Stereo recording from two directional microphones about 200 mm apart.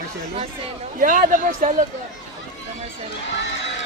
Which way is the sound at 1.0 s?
45° right (ahead or behind).